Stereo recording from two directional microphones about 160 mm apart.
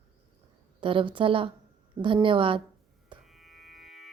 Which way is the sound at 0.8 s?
30° right (ahead or behind).